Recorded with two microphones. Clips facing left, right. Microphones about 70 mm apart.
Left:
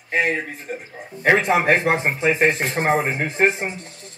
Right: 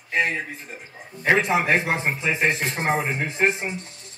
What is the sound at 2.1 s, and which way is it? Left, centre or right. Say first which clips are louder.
Speech: left 6 dB; left.